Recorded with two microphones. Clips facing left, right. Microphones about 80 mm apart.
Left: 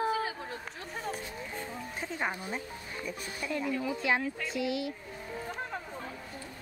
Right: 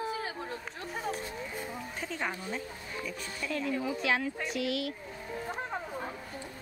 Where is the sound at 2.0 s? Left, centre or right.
Centre.